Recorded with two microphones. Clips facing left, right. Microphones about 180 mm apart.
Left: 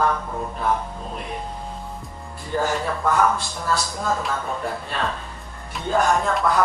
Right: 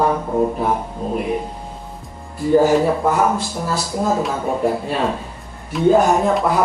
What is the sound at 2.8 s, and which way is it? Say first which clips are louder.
Speech: right 4 dB; 20° right (ahead or behind).